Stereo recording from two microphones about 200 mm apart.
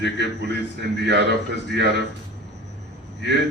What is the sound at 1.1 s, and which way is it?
Speech, 60° right (ahead or behind).